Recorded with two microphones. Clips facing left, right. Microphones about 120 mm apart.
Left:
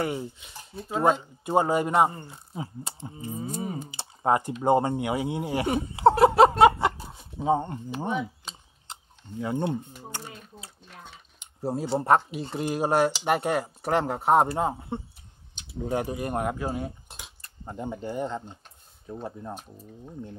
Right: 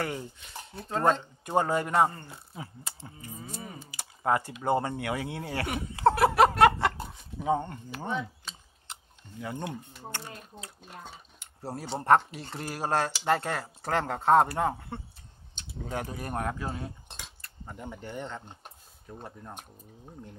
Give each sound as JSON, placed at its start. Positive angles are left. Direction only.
{"t": 0.0, "sound": "speech", "side_deg": 20}
{"t": 0.7, "sound": "speech", "side_deg": 10}
{"t": 3.9, "sound": "typing", "side_deg": 25}
{"t": 4.6, "sound": "speech", "side_deg": 20}
{"t": 9.4, "sound": "speech", "side_deg": 25}
{"t": 11.3, "sound": "a sound", "side_deg": 20}
{"t": 12.3, "sound": "speech", "side_deg": 20}
{"t": 17.6, "sound": "speech", "side_deg": 25}
{"t": 19.5, "sound": "speech", "side_deg": 30}